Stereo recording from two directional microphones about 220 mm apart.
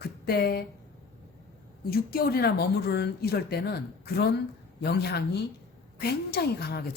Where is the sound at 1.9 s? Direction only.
45° left (ahead or behind).